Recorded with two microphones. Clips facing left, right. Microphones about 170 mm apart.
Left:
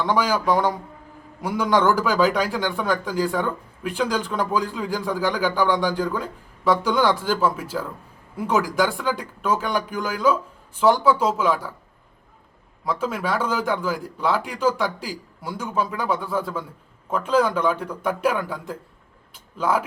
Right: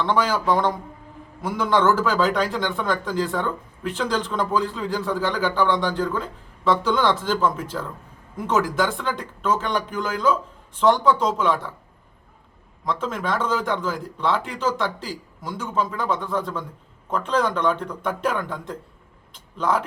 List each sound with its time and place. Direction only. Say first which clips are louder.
0.0 s a man's voice: even; 10° left (ahead or behind)
12.8 s a man's voice: left 1 dB; 10° left (ahead or behind)
19.3 s a sound: even; 10° left (ahead or behind)